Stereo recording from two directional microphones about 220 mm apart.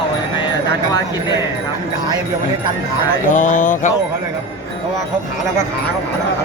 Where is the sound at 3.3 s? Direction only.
35° left (ahead or behind).